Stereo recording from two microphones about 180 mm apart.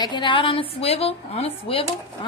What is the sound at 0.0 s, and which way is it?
A woman's voice, 25° left (ahead or behind).